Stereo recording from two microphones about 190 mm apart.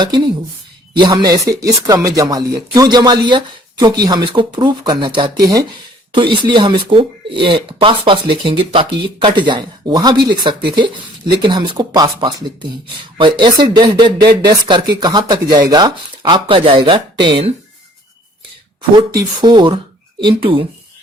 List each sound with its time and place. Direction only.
0.0 s speech: 25° right (ahead or behind)
6.3 s speech: 25° right (ahead or behind)
18.8 s speech: 25° right (ahead or behind)